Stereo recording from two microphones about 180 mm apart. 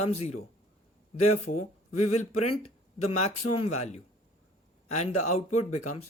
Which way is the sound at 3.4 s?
90° left.